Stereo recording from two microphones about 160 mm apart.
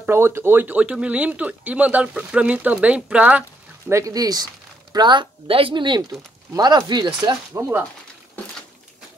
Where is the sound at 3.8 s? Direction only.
20° right (ahead or behind).